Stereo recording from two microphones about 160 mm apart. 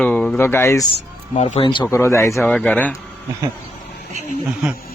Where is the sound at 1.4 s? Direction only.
40° left (ahead or behind).